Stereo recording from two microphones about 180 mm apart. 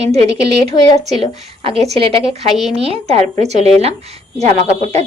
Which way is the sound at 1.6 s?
35° right (ahead or behind).